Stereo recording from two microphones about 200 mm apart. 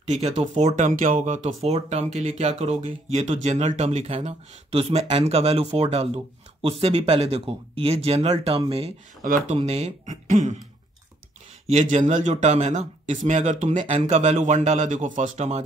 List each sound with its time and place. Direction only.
0.0 s speech: 35° right (ahead or behind)
9.2 s speech: 40° right (ahead or behind)
11.6 s speech: 35° right (ahead or behind)